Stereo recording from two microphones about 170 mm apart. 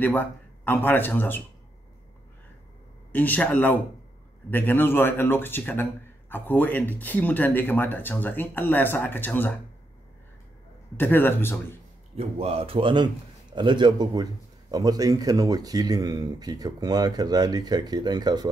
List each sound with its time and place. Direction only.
0.0 s speech: 10° left (ahead or behind)
3.1 s speech: 10° left (ahead or behind)
11.0 s speech: 10° left (ahead or behind)
12.2 s speech: 35° right (ahead or behind)